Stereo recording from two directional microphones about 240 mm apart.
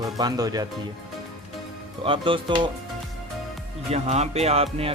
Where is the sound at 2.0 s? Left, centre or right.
Right.